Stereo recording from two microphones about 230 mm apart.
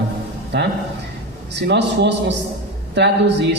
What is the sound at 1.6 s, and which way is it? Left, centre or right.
Speech, right.